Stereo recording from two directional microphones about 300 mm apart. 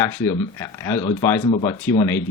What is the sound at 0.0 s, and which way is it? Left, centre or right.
Speech, centre.